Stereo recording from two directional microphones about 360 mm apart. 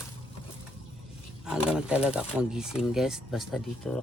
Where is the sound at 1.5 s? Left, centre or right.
Centre.